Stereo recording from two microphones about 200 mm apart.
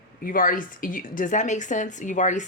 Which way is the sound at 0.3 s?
45° left (ahead or behind).